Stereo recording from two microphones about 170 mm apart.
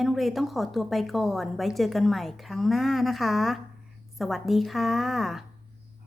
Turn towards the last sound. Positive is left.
turn(degrees=0)  # may be behind; listen again after turning